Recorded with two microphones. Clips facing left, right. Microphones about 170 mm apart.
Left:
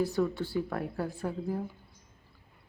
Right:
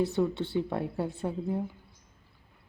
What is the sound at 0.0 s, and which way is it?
A woman's voice, 25° right (ahead or behind).